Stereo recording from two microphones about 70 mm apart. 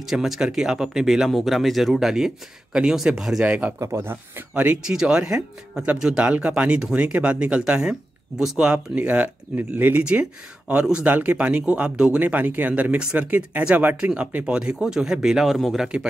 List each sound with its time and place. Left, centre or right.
0.0 s speech: centre
3.4 s speech: centre
3.8 s speech: right
4.8 s speech: centre
10.7 s speech: centre